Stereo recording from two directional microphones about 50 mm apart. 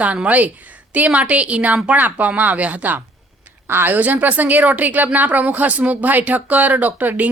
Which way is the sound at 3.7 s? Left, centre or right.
Right.